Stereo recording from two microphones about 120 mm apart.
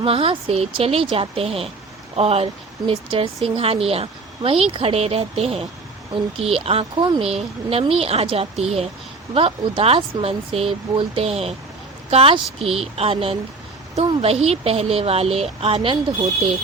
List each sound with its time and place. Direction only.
0.0 s speech: 50° right (ahead or behind)
7.0 s speech: 40° right (ahead or behind)
7.3 s speech: 55° right (ahead or behind)